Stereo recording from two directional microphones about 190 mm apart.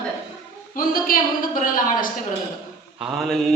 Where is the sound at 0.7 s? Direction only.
45° left (ahead or behind).